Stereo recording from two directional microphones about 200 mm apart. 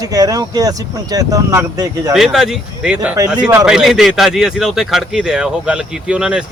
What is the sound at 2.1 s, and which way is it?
Speech, centre (ahead or behind).